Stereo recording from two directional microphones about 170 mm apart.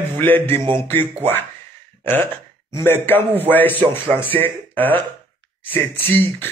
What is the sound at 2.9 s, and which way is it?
Speech, 10° left (ahead or behind).